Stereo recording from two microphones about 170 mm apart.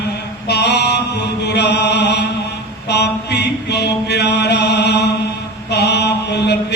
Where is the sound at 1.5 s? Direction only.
85° left.